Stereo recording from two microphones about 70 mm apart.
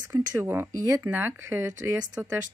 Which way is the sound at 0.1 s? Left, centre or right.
Right.